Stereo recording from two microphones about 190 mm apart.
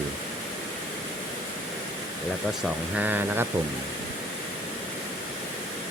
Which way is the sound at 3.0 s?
10° right (ahead or behind).